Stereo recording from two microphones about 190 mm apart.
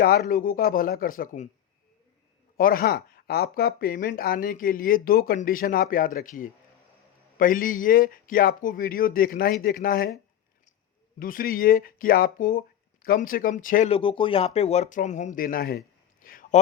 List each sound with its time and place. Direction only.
0.0 s speech: 50° left (ahead or behind)
2.6 s speech: 50° left (ahead or behind)
11.2 s speech: 45° left (ahead or behind)
13.9 s speech: 30° left (ahead or behind); by 15.8 s 50° left (ahead or behind)
16.2 s a sound: 45° left (ahead or behind)